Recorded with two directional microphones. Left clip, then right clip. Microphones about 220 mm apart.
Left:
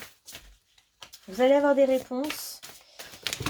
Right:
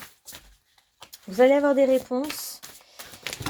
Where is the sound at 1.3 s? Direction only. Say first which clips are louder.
Right 2 dB; 40° right (ahead or behind).